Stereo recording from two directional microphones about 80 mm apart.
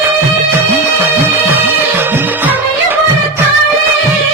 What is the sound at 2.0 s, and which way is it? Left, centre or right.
Music, right.